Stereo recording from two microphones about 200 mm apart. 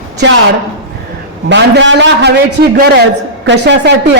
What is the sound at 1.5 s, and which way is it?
A man's voice, 60° right (ahead or behind).